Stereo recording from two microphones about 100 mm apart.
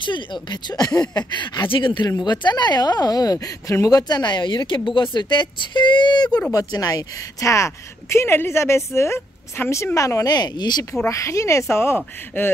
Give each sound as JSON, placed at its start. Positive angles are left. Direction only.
{"t": 0.0, "sound": "a woman's voice", "side_deg": 50}
{"t": 2.0, "sound": "a woman's voice", "side_deg": 45}
{"t": 4.1, "sound": "a woman's voice", "side_deg": 50}
{"t": 11.1, "sound": "a woman's voice", "side_deg": 30}